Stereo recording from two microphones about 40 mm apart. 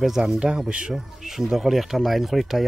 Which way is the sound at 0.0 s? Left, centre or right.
Centre.